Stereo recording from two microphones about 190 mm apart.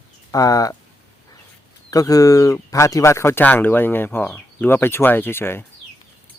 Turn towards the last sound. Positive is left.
turn(degrees=10)  # may be behind; listen again after turning